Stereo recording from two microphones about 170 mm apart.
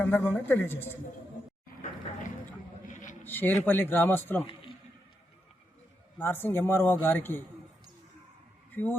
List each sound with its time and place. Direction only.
0.0 s a man's voice: 10° left (ahead or behind)
2.8 s a sound: 50° left (ahead or behind)
3.2 s a man's voice: 10° left (ahead or behind)
6.1 s a man's voice: 15° left (ahead or behind)
8.7 s a woman's voice: 10° left (ahead or behind)